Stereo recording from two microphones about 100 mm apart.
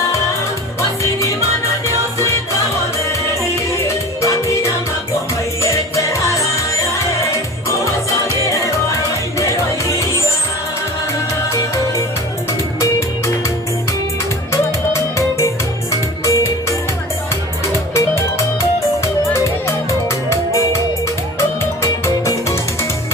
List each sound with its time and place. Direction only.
0.8 s music: 30° left (ahead or behind)
3.8 s music: 30° left (ahead or behind)
9.4 s music: 35° left (ahead or behind)
12.8 s music: 30° left (ahead or behind)
14.5 s music: 30° left (ahead or behind)
21.8 s music: 30° left (ahead or behind)